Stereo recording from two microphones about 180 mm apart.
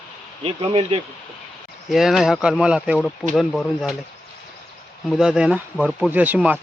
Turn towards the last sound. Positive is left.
turn(degrees=-10)  # may be behind; listen again after turning